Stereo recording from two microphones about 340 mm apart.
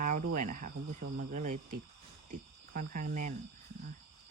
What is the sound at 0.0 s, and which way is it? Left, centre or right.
Cricket, right.